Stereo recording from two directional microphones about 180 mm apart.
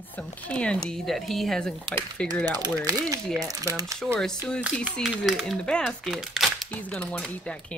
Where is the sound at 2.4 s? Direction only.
20° right (ahead or behind).